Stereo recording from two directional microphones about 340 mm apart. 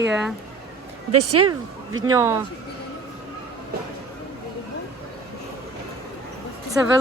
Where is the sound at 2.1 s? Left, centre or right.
Centre.